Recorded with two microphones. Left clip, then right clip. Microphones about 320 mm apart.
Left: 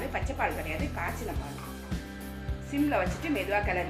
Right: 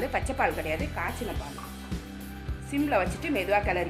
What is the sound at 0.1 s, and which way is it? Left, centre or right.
Speech, right.